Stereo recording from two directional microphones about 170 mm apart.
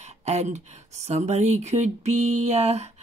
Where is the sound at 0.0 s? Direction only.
40° right (ahead or behind).